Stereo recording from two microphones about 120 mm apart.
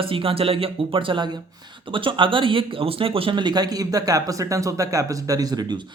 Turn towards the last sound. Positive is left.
turn(degrees=-35)  # may be behind; listen again after turning